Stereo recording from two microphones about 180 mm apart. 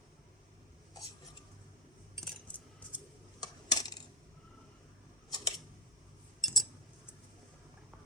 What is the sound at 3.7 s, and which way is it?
Coin, 20° left (ahead or behind).